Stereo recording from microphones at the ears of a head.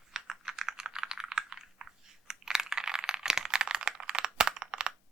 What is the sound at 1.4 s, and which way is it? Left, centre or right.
Chewing, right.